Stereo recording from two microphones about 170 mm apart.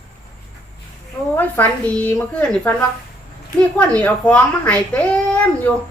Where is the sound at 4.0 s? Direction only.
10° left (ahead or behind).